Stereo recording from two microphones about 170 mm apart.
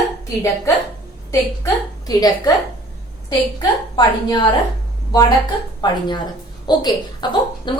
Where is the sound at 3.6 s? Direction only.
25° left (ahead or behind).